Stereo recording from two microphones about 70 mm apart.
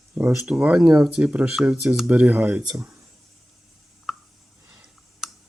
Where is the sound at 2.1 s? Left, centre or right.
Right.